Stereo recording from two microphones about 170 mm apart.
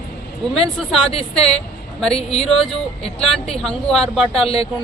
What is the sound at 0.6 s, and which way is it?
Speech, 5° left (ahead or behind).